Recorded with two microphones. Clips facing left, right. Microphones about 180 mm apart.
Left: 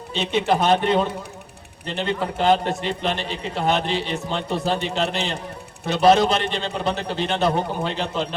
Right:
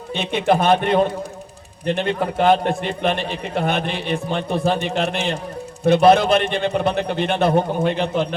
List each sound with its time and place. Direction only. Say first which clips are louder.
0.1 s a man's voice: right 2 dB; 55° right (ahead or behind)